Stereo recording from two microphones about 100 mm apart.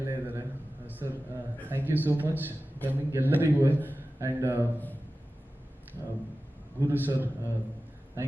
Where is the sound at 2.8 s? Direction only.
20° right (ahead or behind).